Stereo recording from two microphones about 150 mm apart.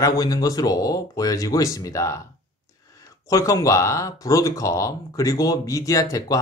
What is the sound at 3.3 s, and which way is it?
Speech, 20° left (ahead or behind).